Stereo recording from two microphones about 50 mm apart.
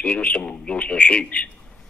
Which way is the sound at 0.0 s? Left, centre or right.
Left.